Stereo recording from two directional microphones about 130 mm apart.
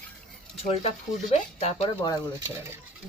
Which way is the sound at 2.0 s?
30° left (ahead or behind).